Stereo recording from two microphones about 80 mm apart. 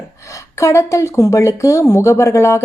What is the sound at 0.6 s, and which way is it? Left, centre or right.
Speech, left.